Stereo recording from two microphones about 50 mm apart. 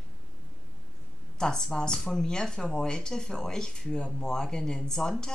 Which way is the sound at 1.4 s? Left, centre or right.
Centre.